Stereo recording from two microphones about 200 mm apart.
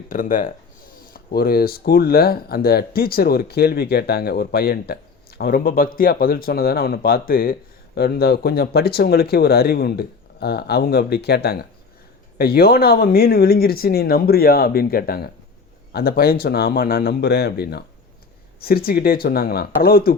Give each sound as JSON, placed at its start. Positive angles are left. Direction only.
{"t": 0.1, "sound": "speech", "side_deg": 40}